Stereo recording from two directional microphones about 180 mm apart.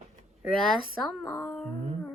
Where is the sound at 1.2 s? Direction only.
20° left (ahead or behind).